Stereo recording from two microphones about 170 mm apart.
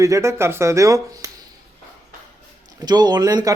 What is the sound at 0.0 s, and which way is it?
Speech, 15° right (ahead or behind).